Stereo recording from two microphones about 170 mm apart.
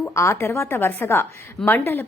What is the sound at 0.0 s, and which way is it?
A woman's voice, 15° left (ahead or behind).